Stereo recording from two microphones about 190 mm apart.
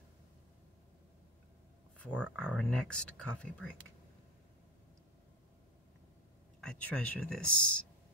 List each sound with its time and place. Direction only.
2.2 s speech: 5° left (ahead or behind)
6.6 s speech: 5° left (ahead or behind)